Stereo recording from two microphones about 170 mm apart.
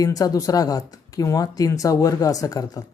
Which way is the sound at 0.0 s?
20° left (ahead or behind).